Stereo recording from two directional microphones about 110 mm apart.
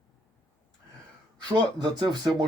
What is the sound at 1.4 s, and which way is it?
Speech, 45° right (ahead or behind).